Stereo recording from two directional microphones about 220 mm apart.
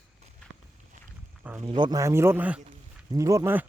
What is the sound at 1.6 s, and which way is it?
Speech, 20° right (ahead or behind).